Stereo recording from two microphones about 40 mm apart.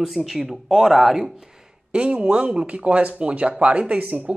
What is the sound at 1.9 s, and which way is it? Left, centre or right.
Speech, right.